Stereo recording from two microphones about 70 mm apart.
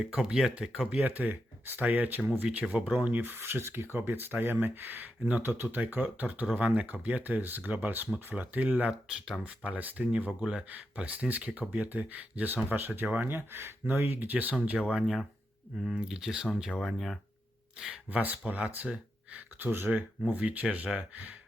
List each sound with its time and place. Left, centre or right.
0.0 s speech: centre
1.0 s speech: right
14.8 s speech: centre
17.7 s speech: centre
18.2 s speech: right